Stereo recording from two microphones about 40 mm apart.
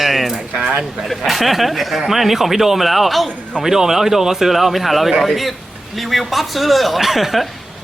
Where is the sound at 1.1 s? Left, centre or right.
Centre.